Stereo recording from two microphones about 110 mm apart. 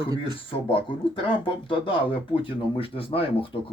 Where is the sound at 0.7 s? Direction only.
55° left (ahead or behind).